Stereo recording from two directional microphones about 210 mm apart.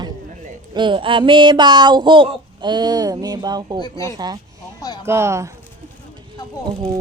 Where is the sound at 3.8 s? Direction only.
20° left (ahead or behind).